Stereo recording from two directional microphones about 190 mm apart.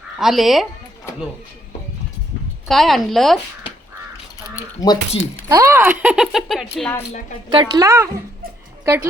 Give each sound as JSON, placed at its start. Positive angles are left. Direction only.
{"t": 0.2, "sound": "speech", "side_deg": 0}
{"t": 2.6, "sound": "speech", "side_deg": 0}
{"t": 4.5, "sound": "speech", "side_deg": 20}
{"t": 5.5, "sound": "speech", "side_deg": -15}
{"t": 7.5, "sound": "a woman's voice", "side_deg": -20}